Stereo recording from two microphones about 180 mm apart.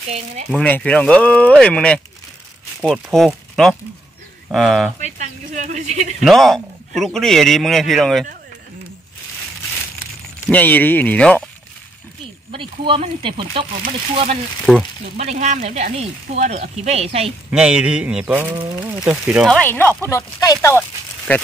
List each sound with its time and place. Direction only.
0.5 s a man's voice: 5° left (ahead or behind)
5.0 s speech: 40° right (ahead or behind)
6.2 s a man's voice: centre (ahead or behind)
10.5 s speech: 10° left (ahead or behind)
12.4 s speech: 30° right (ahead or behind)
14.7 s a man's voice: centre (ahead or behind)
15.1 s speech: 40° right (ahead or behind)
17.5 s speech: 5° right (ahead or behind); by 18.9 s 20° right (ahead or behind)
18.9 s speech: 5° right (ahead or behind)
19.4 s speech: 5° left (ahead or behind)